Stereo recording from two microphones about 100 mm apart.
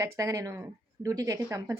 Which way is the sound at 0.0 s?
30° right (ahead or behind).